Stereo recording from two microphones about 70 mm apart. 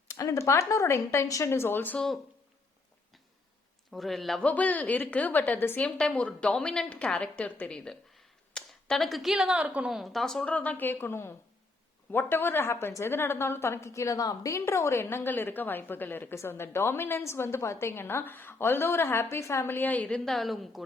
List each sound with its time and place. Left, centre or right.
0.1 s a woman's voice: left
3.9 s a woman's voice: centre
4.4 s a woman's voice: left; by 9.9 s centre
9.9 s a woman's voice: centre
10.4 s a woman's voice: left
10.9 s a woman's voice: left
14.6 s a woman's voice: left
20.1 s a woman's voice: centre